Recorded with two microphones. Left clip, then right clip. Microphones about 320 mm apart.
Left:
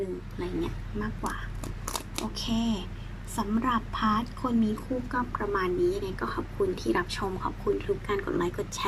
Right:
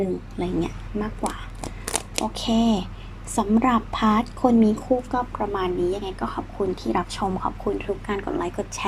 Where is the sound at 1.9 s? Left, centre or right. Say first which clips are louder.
Right 7 dB; centre.